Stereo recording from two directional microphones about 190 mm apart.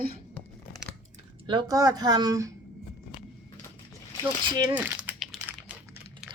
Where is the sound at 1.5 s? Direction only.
20° right (ahead or behind).